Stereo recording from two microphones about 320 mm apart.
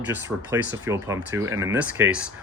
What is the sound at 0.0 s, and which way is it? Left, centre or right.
Speech, centre.